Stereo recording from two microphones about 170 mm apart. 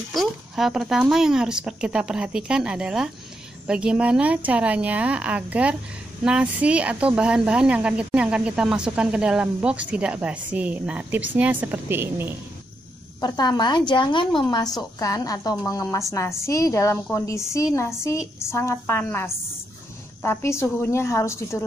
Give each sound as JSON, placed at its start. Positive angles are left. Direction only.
{"t": 0.1, "sound": "speech", "side_deg": 0}
{"t": 13.2, "sound": "a woman's voice", "side_deg": 25}